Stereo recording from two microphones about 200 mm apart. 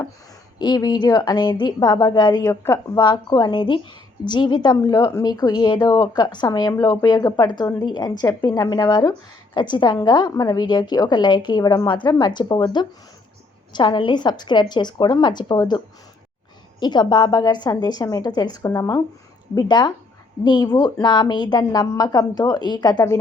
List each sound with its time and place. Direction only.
0.6 s a woman's voice: 20° left (ahead or behind)
16.8 s a woman's voice: 20° left (ahead or behind)